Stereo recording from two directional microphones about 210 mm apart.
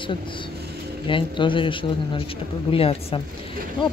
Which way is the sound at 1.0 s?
25° left (ahead or behind).